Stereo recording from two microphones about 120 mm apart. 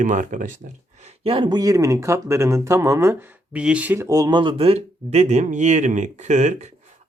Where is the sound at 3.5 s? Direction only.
10° right (ahead or behind); by 6.7 s 75° right (ahead or behind).